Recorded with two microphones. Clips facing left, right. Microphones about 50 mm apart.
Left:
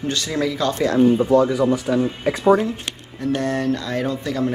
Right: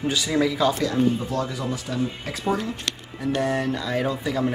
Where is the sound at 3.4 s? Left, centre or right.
Centre.